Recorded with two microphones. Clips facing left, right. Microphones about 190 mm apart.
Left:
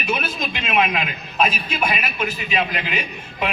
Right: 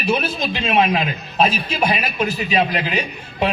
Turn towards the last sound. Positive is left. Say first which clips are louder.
# right 4 dB
turn(degrees=-35)  # may be behind; listen again after turning